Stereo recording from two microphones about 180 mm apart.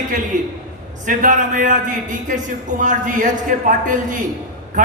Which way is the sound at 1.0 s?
45° right (ahead or behind).